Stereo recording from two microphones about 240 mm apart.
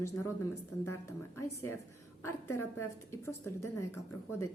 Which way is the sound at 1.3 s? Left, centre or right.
Centre.